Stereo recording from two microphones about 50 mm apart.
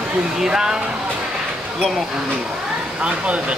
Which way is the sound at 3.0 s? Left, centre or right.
Right.